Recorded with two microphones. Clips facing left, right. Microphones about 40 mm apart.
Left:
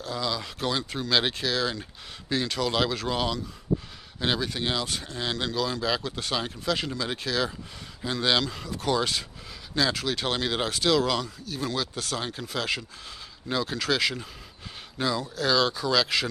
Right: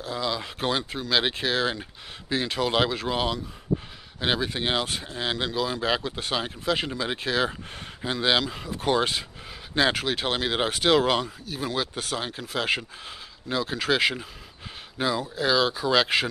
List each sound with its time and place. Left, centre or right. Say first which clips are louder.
0.0 s speech: right 1 dB; centre
0.6 s speech: right 3 dB; right
0.8 s speech: right 1 dB; centre
1.4 s speech: right 2 dB; right
1.8 s speech: right 1 dB; centre
5.0 s speech: right 2 dB; centre
5.8 s speech: right 2 dB; right
10.1 s speech: right 2 dB; centre
10.7 s speech: right 3 dB; right
11.2 s speech: right 1 dB; centre
12.2 s speech: right 2 dB; centre
13.7 s speech: right 5 dB; right